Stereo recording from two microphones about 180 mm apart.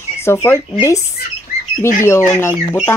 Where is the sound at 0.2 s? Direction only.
15° left (ahead or behind).